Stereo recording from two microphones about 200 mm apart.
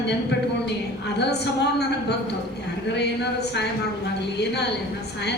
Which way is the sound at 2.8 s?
60° left (ahead or behind).